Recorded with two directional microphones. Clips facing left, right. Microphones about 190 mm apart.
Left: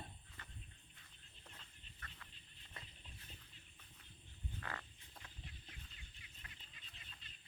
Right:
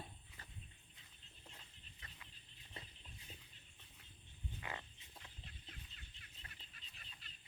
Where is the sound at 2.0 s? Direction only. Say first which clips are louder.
Left 2 dB; 15° right (ahead or behind).